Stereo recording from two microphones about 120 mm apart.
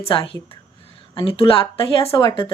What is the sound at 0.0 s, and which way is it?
A woman's voice, 50° left (ahead or behind).